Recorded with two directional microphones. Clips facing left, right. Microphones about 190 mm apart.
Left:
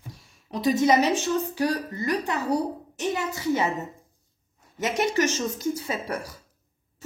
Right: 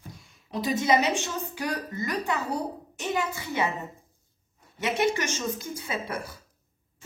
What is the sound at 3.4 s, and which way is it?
Speech, 40° left (ahead or behind).